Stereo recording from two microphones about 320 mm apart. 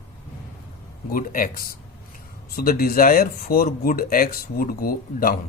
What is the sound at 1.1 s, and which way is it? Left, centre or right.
Speech, left.